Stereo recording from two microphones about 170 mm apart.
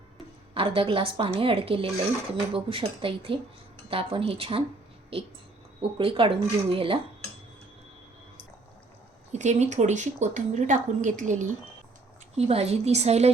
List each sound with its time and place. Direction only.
0.5 s a woman's voice: 35° right (ahead or behind)
5.8 s a woman's voice: 30° right (ahead or behind)
9.3 s a woman's voice: 45° right (ahead or behind)